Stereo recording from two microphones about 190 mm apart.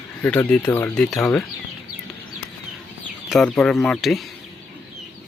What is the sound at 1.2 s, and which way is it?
Speech, 15° left (ahead or behind).